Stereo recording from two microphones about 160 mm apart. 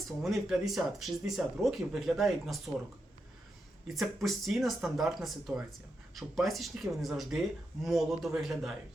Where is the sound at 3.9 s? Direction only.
Centre (ahead or behind).